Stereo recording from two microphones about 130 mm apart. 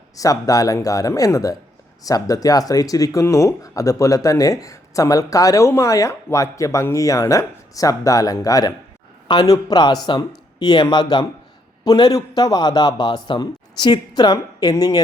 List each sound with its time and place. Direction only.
0.2 s a man's voice: 25° left (ahead or behind)